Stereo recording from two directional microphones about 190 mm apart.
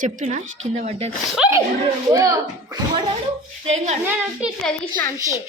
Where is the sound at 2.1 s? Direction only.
15° right (ahead or behind).